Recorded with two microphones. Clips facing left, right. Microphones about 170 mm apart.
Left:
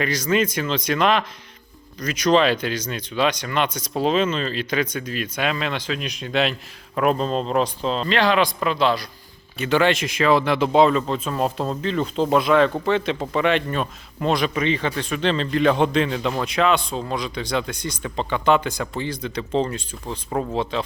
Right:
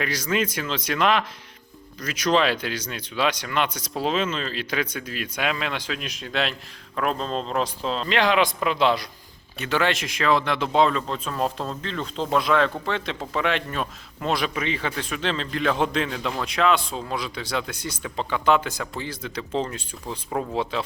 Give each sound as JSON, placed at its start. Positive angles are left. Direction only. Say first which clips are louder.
{"t": 0.0, "sound": "speech", "louder": "left 4 dB", "side_deg": -5}
{"t": 8.1, "sound": "a man's voice", "louder": "left 1 dB", "side_deg": -15}
{"t": 9.6, "sound": "a man's voice", "louder": "left 5 dB", "side_deg": 0}